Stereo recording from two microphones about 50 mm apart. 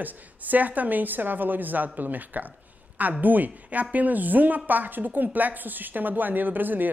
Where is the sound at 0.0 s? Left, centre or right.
Right.